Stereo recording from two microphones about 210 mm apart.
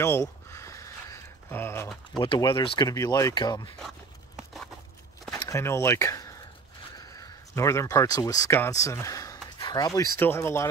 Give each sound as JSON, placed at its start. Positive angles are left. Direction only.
{"t": 0.0, "sound": "a sound", "side_deg": 10}
{"t": 2.2, "sound": "speech", "side_deg": 20}
{"t": 5.3, "sound": "speech", "side_deg": 15}